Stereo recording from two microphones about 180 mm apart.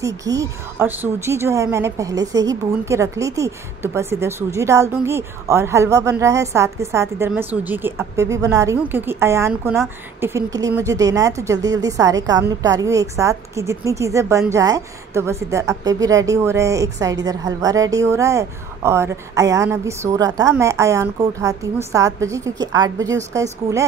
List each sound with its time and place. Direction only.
0.0 s a woman's voice: 20° right (ahead or behind)